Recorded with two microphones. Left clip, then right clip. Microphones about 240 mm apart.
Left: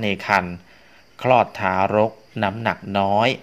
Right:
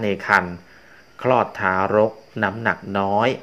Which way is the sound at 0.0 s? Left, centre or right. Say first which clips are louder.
Right 1 dB; left.